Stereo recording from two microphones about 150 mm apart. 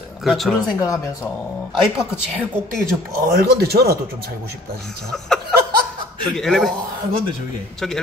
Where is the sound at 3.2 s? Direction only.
85° right.